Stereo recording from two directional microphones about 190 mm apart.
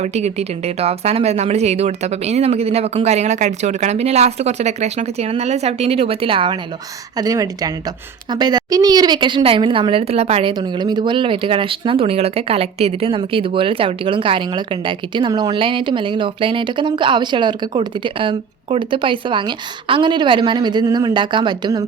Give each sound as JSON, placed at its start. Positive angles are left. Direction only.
{"t": 0.0, "sound": "speech", "side_deg": -35}